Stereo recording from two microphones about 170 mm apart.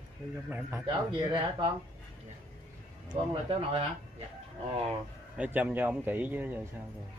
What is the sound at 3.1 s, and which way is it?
Speech, 30° right (ahead or behind).